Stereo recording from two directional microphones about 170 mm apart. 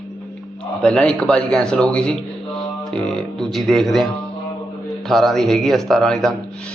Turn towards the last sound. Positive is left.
turn(degrees=0)  # may be behind; listen again after turning